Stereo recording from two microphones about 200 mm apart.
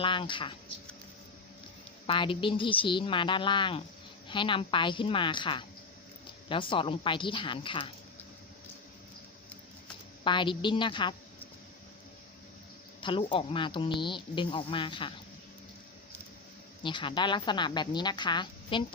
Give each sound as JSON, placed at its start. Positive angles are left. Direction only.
{"t": 0.0, "sound": "speech", "side_deg": 25}
{"t": 2.0, "sound": "speech", "side_deg": 25}
{"t": 10.2, "sound": "speech", "side_deg": 25}
{"t": 13.0, "sound": "speech", "side_deg": 25}
{"t": 16.8, "sound": "speech", "side_deg": 25}